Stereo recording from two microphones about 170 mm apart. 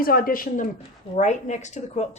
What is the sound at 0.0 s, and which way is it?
Speech, 60° left (ahead or behind).